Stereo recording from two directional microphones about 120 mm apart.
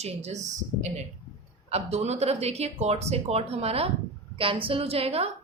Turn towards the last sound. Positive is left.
turn(degrees=-55)  # may be behind; listen again after turning